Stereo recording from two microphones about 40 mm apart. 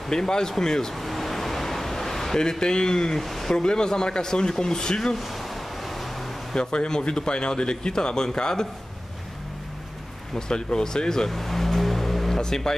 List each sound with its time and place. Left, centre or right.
0.1 s speech: centre
0.9 s a sound: centre
2.6 s speech: centre
3.2 s speech: centre
3.5 s speech: centre
5.1 s a sound: centre
6.5 s speech: left
10.3 s vehicle: centre
12.4 s speech: centre